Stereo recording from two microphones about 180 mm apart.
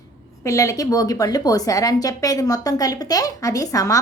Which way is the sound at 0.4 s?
15° left (ahead or behind).